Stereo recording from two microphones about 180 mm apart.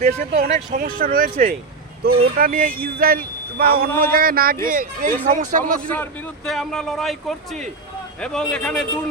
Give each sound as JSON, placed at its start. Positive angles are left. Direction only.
{"t": 0.0, "sound": "speech", "side_deg": -40}
{"t": 0.8, "sound": "speech", "side_deg": -50}
{"t": 5.9, "sound": "speech", "side_deg": 10}